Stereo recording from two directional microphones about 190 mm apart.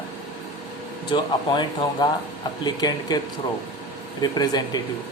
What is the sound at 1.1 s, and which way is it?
Speech, 25° left (ahead or behind).